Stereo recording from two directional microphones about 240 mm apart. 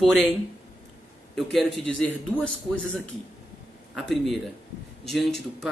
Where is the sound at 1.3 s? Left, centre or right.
Centre.